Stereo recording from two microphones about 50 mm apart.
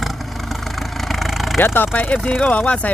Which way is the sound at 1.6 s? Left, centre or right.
Left.